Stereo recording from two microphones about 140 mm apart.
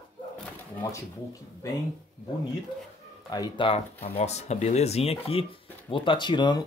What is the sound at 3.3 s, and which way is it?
Speech, 25° left (ahead or behind).